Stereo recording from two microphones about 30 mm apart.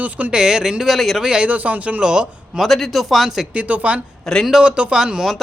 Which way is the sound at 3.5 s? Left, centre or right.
Right.